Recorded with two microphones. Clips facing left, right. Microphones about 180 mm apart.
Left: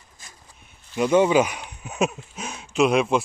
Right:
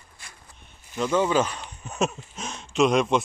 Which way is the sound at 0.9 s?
15° left (ahead or behind).